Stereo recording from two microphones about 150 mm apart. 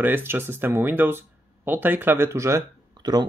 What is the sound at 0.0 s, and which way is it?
Speech, 15° right (ahead or behind).